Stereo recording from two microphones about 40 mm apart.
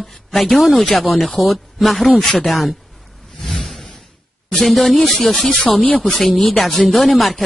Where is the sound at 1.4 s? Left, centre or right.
Centre.